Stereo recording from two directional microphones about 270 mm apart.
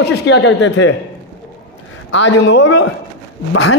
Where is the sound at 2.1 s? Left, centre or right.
Left.